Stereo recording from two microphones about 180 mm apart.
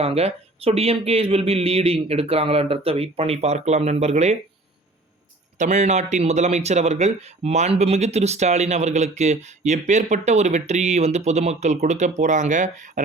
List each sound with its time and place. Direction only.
0.0 s a man's voice: 35° right (ahead or behind)
5.5 s a man's voice: 40° right (ahead or behind)